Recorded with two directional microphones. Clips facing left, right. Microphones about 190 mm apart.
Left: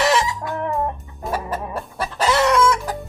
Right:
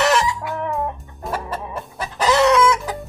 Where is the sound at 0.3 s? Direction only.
Centre (ahead or behind).